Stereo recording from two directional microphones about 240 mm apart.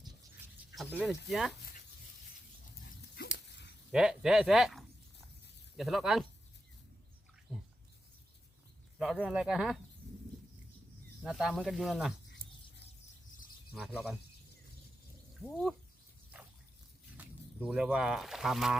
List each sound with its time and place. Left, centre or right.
0.8 s speech: centre
3.3 s dog: left
3.9 s speech: centre
9.0 s speech: centre
11.2 s speech: centre
13.8 s speech: centre
17.2 s speech: centre